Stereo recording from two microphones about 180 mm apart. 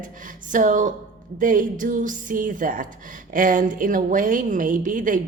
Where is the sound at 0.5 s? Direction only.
45° right (ahead or behind).